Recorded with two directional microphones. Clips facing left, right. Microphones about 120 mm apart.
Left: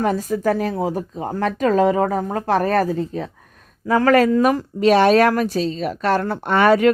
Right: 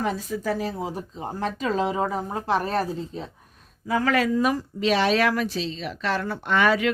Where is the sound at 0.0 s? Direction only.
50° left (ahead or behind).